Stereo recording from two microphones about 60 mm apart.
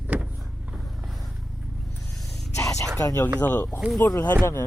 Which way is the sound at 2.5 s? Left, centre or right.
Left.